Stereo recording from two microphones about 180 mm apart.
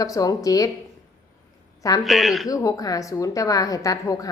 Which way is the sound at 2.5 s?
20° left (ahead or behind).